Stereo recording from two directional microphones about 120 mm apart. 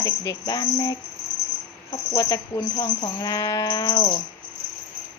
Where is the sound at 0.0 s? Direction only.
30° left (ahead or behind).